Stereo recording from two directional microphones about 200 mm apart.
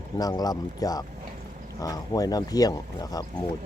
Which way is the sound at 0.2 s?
20° left (ahead or behind).